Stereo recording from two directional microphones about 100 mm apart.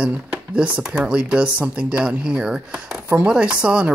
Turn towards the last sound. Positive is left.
turn(degrees=-10)  # may be behind; listen again after turning